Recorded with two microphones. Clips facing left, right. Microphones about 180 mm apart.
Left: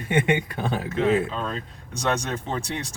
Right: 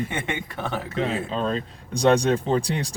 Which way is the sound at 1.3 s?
30° right (ahead or behind).